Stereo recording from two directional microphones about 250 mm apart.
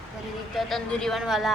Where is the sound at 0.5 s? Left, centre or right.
Centre.